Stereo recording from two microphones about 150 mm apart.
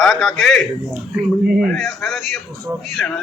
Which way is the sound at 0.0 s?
Centre (ahead or behind).